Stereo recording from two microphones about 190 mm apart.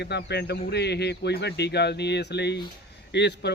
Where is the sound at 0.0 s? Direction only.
60° left (ahead or behind).